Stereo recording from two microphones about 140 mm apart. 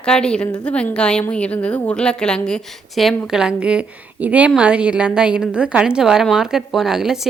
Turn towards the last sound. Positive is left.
turn(degrees=-5)  # may be behind; listen again after turning